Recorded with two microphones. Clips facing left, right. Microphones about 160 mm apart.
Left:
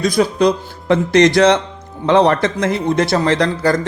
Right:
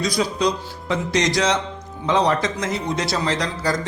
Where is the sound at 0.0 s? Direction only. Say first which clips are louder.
Left 7 dB; 55° left (ahead or behind).